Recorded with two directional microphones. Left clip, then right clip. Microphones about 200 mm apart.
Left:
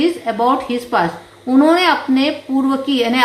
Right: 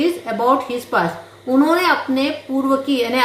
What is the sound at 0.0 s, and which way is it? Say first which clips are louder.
A woman's voice: left 2 dB; 40° left (ahead or behind).